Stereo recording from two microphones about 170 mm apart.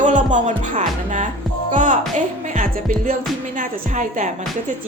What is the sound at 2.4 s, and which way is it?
Music, 50° right (ahead or behind).